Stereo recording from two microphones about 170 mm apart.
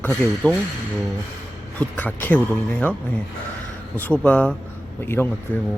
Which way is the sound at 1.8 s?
10° left (ahead or behind).